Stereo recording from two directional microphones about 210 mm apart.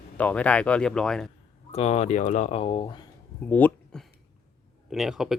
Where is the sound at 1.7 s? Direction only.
30° left (ahead or behind).